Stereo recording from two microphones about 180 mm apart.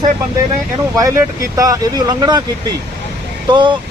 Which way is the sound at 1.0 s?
20° right (ahead or behind).